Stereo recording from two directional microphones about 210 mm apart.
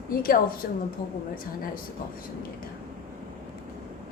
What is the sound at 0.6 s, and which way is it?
Speech, 45° left (ahead or behind).